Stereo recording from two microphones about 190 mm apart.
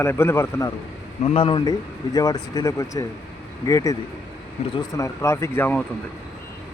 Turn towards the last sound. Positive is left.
turn(degrees=10)  # may be behind; listen again after turning